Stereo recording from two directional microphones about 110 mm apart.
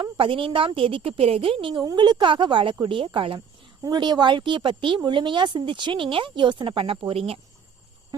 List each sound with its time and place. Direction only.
0.0 s speech: 50° right (ahead or behind)
3.8 s speech: 40° right (ahead or behind); by 7.3 s 60° right (ahead or behind)